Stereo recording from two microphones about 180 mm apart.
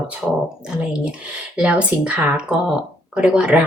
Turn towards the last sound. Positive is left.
turn(degrees=-5)  # may be behind; listen again after turning